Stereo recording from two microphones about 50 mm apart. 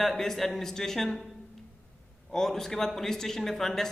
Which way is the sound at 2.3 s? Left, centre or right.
Centre.